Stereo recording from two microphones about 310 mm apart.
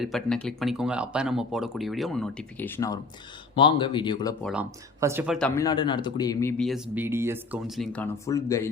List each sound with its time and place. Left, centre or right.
0.0 s speech: centre
4.4 s speech: centre